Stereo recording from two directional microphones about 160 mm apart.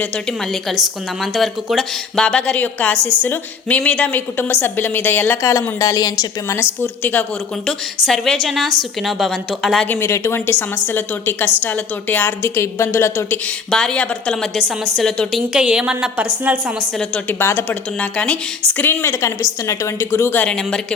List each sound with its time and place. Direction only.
0.8 s a woman's voice: centre (ahead or behind)
9.9 s speech: 15° left (ahead or behind)
13.7 s a woman's voice: 5° left (ahead or behind)
17.0 s speech: 15° left (ahead or behind)